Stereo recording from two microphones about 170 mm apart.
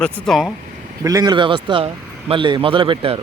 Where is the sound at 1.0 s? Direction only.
20° right (ahead or behind).